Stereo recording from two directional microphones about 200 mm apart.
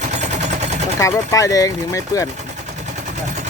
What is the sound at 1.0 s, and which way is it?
Speech, 15° left (ahead or behind).